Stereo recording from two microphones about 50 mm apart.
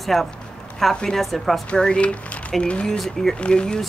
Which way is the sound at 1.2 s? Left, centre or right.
Centre.